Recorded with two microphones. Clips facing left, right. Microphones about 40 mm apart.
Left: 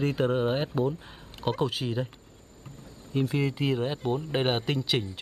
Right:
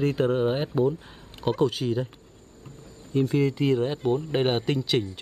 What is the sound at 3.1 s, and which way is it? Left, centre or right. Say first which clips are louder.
Speech: right 4 dB; centre.